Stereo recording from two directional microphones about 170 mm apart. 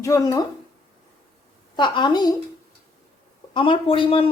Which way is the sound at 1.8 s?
25° left (ahead or behind).